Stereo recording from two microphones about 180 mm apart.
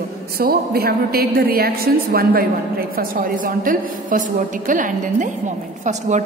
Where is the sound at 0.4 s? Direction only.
55° right (ahead or behind).